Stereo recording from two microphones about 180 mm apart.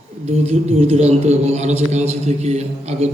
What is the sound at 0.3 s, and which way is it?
Speech, 35° right (ahead or behind).